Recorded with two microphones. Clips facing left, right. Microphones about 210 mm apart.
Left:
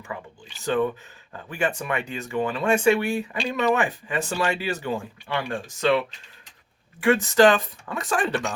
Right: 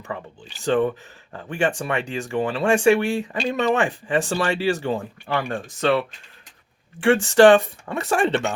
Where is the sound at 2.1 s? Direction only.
80° right.